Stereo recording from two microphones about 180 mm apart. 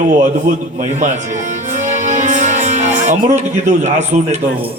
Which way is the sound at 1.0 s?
40° right (ahead or behind).